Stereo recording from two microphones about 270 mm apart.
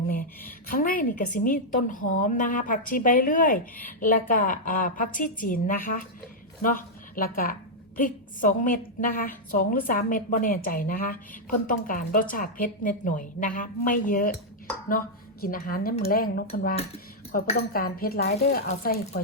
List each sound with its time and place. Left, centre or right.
0.1 s a woman's voice: left
17.3 s a woman's voice: left
17.6 s a woman's voice: left